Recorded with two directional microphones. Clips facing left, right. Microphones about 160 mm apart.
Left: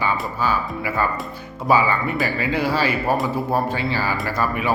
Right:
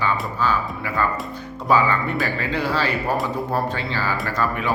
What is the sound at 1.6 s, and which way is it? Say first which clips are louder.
Speech: left 1 dB; 10° left (ahead or behind).